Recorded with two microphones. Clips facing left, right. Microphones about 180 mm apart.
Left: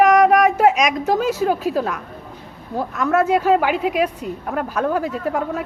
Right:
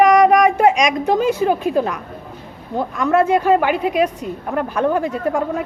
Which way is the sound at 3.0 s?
Centre (ahead or behind).